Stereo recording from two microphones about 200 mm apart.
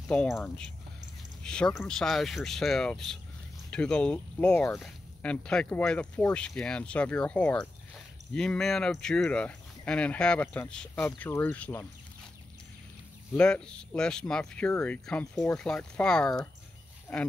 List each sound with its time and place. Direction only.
0.1 s speech: 5° left (ahead or behind)
13.3 s speech: 5° left (ahead or behind)